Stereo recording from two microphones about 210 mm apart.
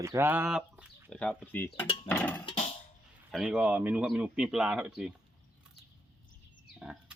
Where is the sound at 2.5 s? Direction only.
25° left (ahead or behind).